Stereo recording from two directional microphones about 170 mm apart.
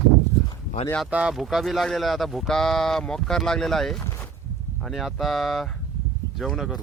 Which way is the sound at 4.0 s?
15° left (ahead or behind).